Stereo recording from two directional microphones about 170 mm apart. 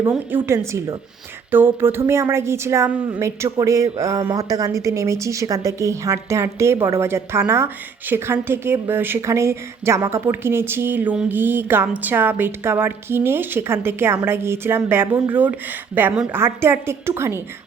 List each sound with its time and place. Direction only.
0.0 s a woman's voice: 10° right (ahead or behind)